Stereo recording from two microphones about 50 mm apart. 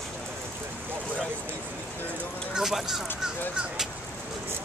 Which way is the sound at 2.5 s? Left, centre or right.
Centre.